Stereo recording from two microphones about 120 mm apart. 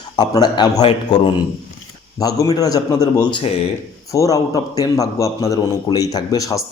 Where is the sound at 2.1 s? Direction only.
30° left (ahead or behind).